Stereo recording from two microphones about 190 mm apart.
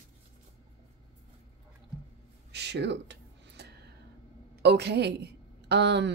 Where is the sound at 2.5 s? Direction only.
60° right (ahead or behind).